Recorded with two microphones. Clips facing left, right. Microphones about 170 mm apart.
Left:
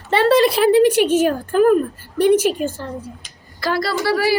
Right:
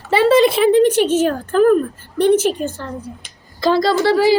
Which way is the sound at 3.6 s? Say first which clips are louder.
Right 6 dB; 20° right (ahead or behind).